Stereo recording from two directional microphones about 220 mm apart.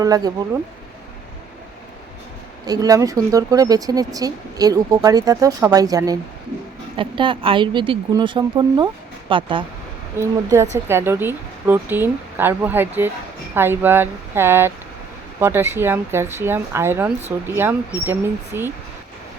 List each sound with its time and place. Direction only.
0.0 s speech: 15° right (ahead or behind)
2.6 s speech: 15° right (ahead or behind)